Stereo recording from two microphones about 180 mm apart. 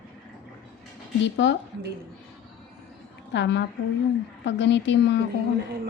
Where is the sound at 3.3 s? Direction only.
80° left.